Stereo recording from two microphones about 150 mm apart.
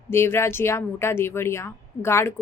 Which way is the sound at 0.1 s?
15° left (ahead or behind).